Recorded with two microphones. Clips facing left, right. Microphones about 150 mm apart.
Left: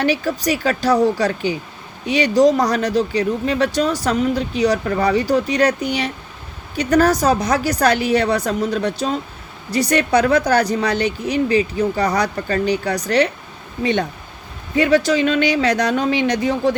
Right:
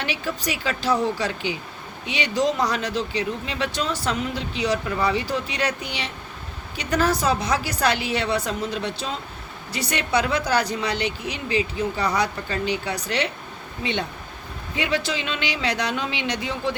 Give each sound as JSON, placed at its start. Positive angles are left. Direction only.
{"t": 0.0, "sound": "speech", "side_deg": 40}
{"t": 14.8, "sound": "speech", "side_deg": 45}